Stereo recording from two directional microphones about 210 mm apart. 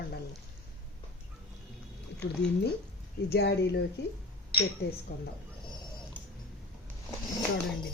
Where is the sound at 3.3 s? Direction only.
50° left (ahead or behind).